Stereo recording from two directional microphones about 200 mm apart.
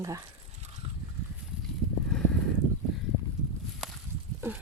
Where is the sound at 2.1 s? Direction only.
Centre (ahead or behind).